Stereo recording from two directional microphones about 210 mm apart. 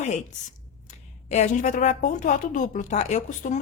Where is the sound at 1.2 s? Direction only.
35° left (ahead or behind).